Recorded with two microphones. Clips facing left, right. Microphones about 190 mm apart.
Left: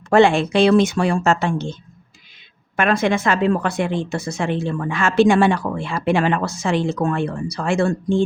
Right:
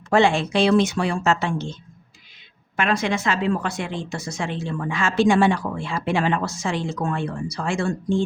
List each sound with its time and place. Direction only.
0.1 s speech: 60° left (ahead or behind)
2.7 s a woman's voice: 55° left (ahead or behind)